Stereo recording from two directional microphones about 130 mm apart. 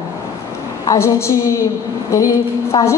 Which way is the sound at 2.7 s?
35° left (ahead or behind).